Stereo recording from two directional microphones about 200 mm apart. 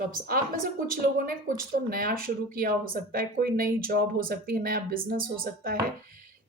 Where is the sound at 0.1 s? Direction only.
45° right (ahead or behind).